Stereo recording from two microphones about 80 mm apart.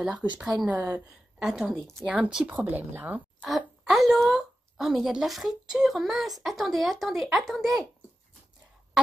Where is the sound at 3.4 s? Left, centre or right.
Centre.